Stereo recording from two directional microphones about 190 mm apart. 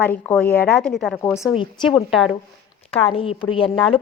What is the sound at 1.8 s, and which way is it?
Speech, centre (ahead or behind).